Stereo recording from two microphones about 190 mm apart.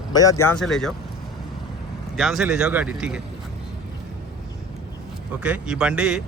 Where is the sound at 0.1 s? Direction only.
20° left (ahead or behind).